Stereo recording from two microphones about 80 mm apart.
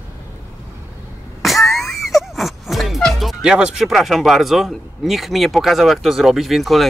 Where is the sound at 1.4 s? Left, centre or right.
Centre.